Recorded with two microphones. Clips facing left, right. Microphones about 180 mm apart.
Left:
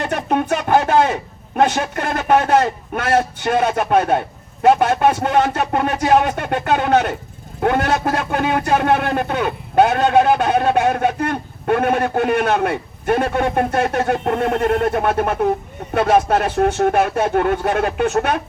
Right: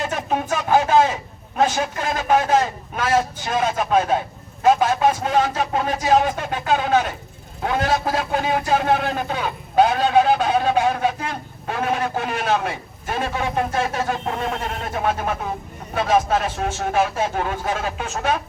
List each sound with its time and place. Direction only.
0.0 s a man's voice: 60° left (ahead or behind)